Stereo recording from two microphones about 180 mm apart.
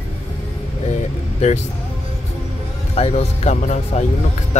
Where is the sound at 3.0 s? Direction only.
35° left (ahead or behind).